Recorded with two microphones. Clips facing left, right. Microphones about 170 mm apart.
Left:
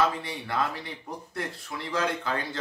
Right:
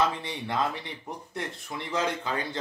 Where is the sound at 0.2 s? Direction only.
20° right (ahead or behind).